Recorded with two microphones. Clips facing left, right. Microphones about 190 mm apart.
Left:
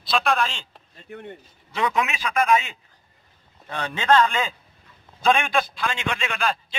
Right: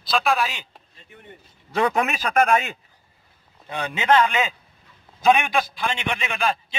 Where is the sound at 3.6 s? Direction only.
10° right (ahead or behind).